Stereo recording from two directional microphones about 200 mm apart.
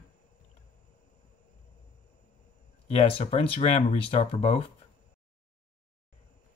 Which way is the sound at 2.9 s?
30° left (ahead or behind).